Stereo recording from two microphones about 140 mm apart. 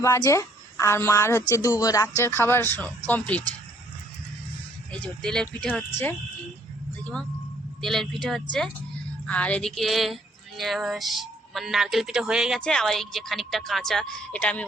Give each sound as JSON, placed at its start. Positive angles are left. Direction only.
{"t": 0.0, "sound": "speech", "side_deg": 20}
{"t": 4.9, "sound": "speech", "side_deg": 5}
{"t": 7.8, "sound": "speech", "side_deg": 5}